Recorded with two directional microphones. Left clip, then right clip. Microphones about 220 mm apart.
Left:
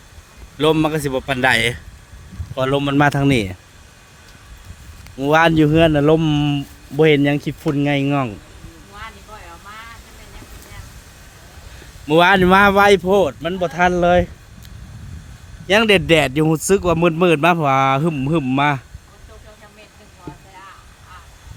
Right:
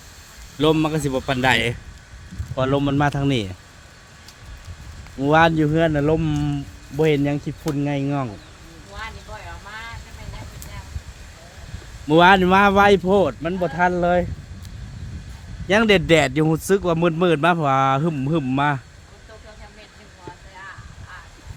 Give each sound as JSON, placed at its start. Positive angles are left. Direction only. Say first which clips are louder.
{"t": 0.6, "sound": "speech", "louder": "left 3 dB", "side_deg": 30}
{"t": 5.2, "sound": "speech", "louder": "left 3 dB", "side_deg": 35}
{"t": 12.0, "sound": "speech", "louder": "left 1 dB", "side_deg": 30}
{"t": 15.6, "sound": "speech", "louder": "left 3 dB", "side_deg": 20}